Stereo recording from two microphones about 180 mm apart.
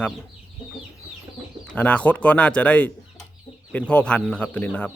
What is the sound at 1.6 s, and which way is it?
Speech, 5° left (ahead or behind).